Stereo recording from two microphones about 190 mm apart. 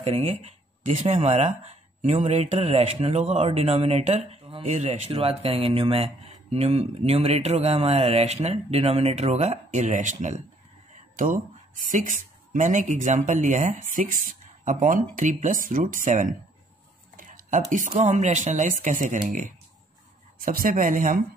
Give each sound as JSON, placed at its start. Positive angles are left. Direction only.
{"t": 0.0, "sound": "speech", "side_deg": -30}